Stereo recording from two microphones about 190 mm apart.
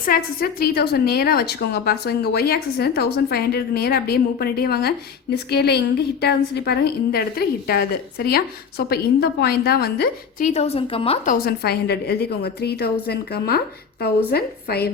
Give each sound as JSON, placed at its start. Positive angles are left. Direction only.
{"t": 0.0, "sound": "a woman's voice", "side_deg": 50}
{"t": 10.5, "sound": "a woman's voice", "side_deg": 30}
{"t": 11.3, "sound": "a woman's voice", "side_deg": 55}